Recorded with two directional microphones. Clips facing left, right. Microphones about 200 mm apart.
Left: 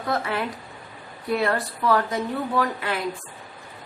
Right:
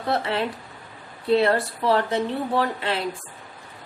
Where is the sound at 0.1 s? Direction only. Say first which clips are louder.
Right 2 dB; 25° right (ahead or behind).